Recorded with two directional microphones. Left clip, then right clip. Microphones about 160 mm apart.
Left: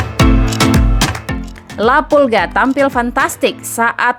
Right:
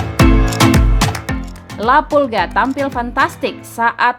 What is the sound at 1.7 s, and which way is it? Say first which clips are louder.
A woman's voice: left 2 dB; 35° left (ahead or behind).